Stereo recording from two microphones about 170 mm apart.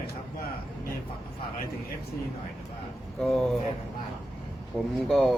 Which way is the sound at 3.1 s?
Centre (ahead or behind).